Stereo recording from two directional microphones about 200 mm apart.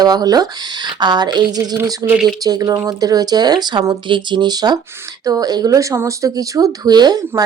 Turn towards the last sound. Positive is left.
turn(degrees=-20)  # may be behind; listen again after turning